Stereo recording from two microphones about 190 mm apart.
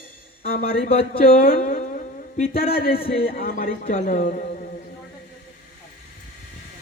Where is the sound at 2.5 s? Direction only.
50° left (ahead or behind).